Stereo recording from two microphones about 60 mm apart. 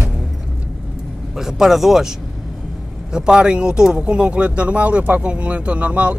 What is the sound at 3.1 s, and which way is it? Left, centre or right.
Speech, centre.